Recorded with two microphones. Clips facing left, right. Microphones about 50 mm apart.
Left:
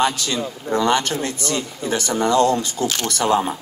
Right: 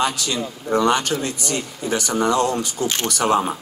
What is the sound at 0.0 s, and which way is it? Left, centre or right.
A woman's voice, left.